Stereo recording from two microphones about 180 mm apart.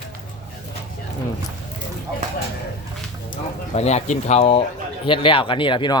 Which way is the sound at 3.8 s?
35° left (ahead or behind).